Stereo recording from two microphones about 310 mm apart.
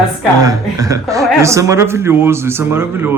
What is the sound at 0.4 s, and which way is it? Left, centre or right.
Speech, centre.